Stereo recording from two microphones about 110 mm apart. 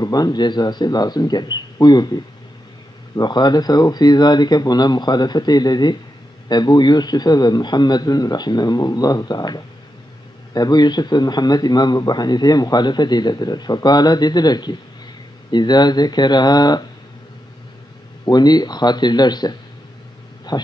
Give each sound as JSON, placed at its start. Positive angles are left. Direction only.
{"t": 0.0, "sound": "a man's voice", "side_deg": 35}
{"t": 3.2, "sound": "a man's voice", "side_deg": 40}
{"t": 18.2, "sound": "a man's voice", "side_deg": 40}
{"t": 20.5, "sound": "a man's voice", "side_deg": 35}